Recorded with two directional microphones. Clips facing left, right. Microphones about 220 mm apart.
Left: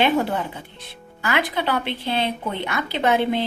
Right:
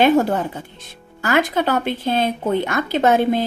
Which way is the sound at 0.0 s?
45° right (ahead or behind).